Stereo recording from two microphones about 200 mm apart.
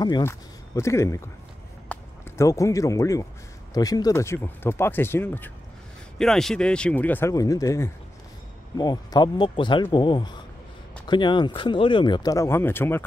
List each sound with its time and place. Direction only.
0.0 s speech: 15° left (ahead or behind)